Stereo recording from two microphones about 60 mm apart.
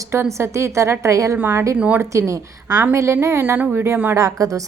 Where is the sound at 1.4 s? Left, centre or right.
Right.